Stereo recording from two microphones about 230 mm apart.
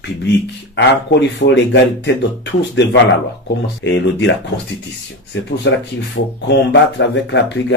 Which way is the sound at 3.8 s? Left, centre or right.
Left.